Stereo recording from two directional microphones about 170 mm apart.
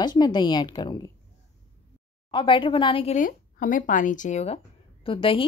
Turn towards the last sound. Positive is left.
turn(degrees=30)  # may be behind; listen again after turning